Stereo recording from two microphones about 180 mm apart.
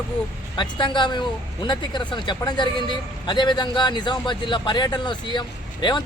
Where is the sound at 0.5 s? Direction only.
25° left (ahead or behind).